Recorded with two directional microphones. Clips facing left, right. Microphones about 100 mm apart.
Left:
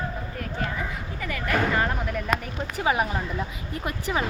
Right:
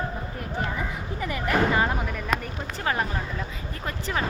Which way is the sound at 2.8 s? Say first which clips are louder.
Left 3 dB; 10° left (ahead or behind).